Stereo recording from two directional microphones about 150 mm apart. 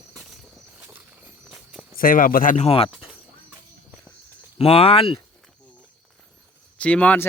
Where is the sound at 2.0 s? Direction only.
70° left (ahead or behind).